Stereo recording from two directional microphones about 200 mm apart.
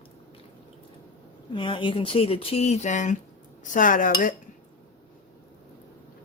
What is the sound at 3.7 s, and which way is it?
Cutlery, 40° left (ahead or behind).